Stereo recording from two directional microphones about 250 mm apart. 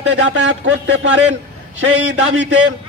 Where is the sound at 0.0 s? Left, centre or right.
Right.